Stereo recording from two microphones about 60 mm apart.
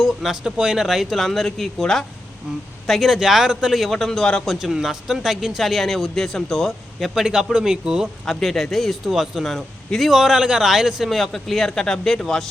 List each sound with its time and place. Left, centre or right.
0.0 s a man's voice: centre
4.5 s a man's voice: centre
8.2 s a man's voice: centre